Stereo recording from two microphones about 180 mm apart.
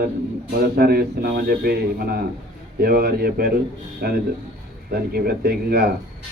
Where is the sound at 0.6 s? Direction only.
60° right (ahead or behind).